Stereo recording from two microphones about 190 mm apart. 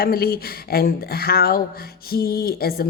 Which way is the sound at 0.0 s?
55° left (ahead or behind).